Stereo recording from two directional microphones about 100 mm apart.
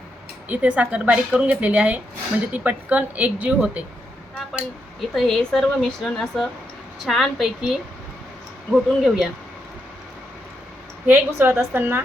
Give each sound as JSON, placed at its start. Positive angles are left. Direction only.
{"t": 0.4, "sound": "a woman's voice", "side_deg": -15}
{"t": 4.5, "sound": "speech", "side_deg": 0}
{"t": 11.0, "sound": "a woman's voice", "side_deg": -20}